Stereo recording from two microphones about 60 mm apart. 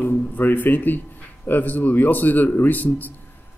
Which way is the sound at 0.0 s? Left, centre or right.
Left.